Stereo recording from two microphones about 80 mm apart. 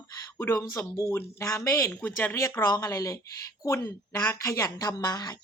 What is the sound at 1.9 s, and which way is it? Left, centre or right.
Speech, left.